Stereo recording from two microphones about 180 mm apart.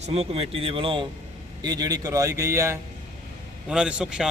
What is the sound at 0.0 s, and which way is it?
A man's voice, 35° right (ahead or behind).